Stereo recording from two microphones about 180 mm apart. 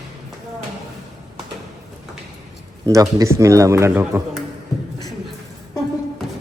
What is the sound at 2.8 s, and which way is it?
A man's voice, 20° right (ahead or behind).